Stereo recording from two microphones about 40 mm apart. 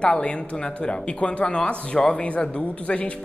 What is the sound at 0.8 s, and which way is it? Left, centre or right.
A man's voice, left.